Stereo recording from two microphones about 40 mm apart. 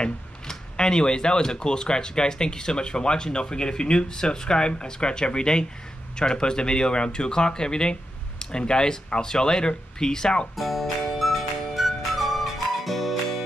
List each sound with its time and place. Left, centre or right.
0.0 s speech: centre
10.5 s music: centre